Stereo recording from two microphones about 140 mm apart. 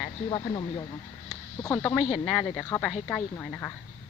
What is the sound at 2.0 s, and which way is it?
Speech, 55° left (ahead or behind).